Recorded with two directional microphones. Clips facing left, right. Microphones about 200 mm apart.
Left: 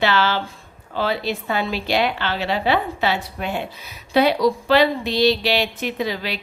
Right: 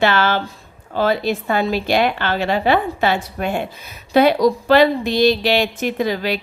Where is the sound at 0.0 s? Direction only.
50° right (ahead or behind).